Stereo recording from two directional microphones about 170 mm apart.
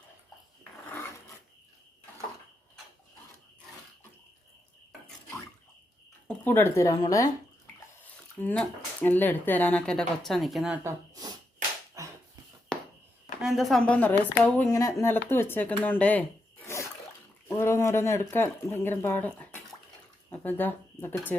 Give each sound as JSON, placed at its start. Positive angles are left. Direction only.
{"t": 6.2, "sound": "speech", "side_deg": 15}
{"t": 8.4, "sound": "speech", "side_deg": 10}
{"t": 10.8, "sound": "snort", "side_deg": -20}
{"t": 12.0, "sound": "finger snapping", "side_deg": -20}
{"t": 12.7, "sound": "a sound", "side_deg": 5}
{"t": 13.4, "sound": "a woman's voice", "side_deg": 0}
{"t": 17.5, "sound": "speech", "side_deg": 15}